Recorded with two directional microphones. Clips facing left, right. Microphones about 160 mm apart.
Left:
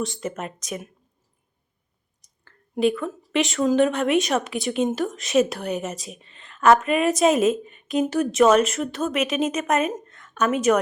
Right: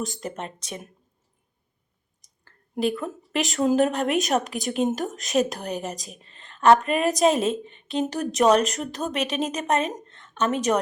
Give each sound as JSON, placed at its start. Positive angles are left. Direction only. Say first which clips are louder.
{"t": 0.0, "sound": "a woman's voice", "louder": "left 3 dB", "side_deg": -40}
{"t": 2.8, "sound": "a woman's voice", "louder": "left 4 dB", "side_deg": -40}
{"t": 8.1, "sound": "a woman's voice", "louder": "left 2 dB", "side_deg": -40}
{"t": 10.1, "sound": "a sound", "louder": "left 2 dB", "side_deg": -30}